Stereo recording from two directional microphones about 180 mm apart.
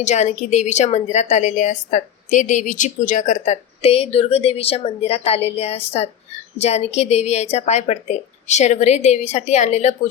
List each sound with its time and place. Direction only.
0.0 s a woman's voice: 40° left (ahead or behind)